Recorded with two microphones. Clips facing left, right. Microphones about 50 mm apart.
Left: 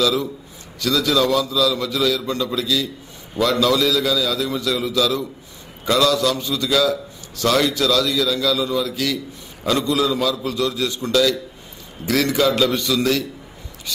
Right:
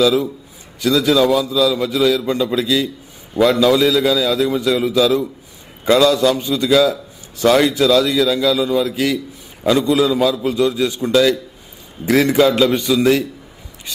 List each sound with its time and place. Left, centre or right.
0.0 s a man's voice: centre